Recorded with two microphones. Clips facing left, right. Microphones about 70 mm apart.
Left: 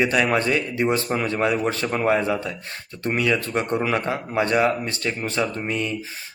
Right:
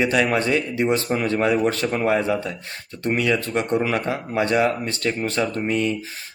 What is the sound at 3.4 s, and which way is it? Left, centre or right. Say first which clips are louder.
Speech: right 2 dB; left.